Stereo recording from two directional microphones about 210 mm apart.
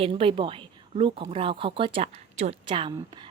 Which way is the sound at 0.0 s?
25° right (ahead or behind).